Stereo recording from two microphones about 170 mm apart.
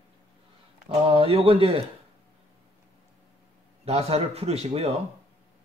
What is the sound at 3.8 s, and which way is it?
Speech, 35° right (ahead or behind).